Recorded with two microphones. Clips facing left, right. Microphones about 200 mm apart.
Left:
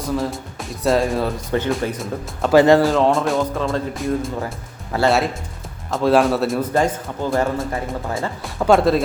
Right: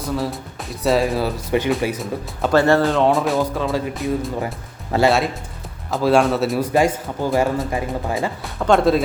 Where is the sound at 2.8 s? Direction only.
Centre (ahead or behind).